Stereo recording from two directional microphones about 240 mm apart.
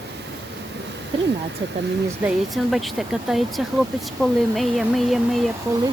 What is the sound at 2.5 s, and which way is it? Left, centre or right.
Speech, centre.